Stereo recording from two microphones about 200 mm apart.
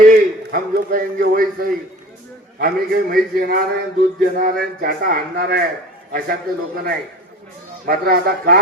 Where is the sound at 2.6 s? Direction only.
45° right (ahead or behind).